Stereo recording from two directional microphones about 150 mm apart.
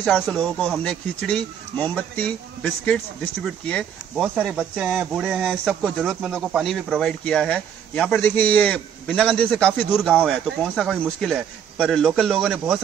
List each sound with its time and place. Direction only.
0.0 s speech: 5° left (ahead or behind)
4.1 s a man's voice: 5° right (ahead or behind)